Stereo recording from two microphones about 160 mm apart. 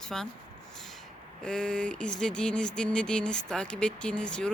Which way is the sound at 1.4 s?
5° left (ahead or behind).